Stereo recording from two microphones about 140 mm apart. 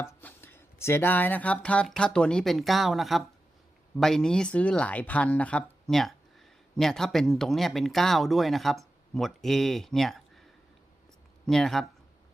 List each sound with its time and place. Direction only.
0.0 s speech: 15° left (ahead or behind)
11.4 s speech: centre (ahead or behind)